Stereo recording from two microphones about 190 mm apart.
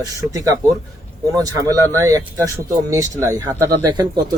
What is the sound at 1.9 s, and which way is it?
Speech, 15° right (ahead or behind).